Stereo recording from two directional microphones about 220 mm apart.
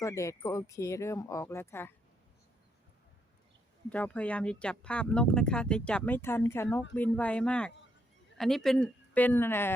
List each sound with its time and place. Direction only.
0.0 s speech: 15° left (ahead or behind)
3.8 s speech: 5° left (ahead or behind)